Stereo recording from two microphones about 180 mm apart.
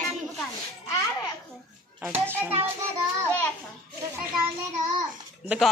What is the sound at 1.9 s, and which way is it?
Speech, 10° right (ahead or behind).